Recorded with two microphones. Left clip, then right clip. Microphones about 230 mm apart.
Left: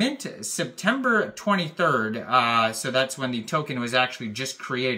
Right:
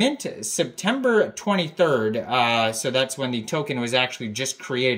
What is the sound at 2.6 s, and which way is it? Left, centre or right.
Speech, left.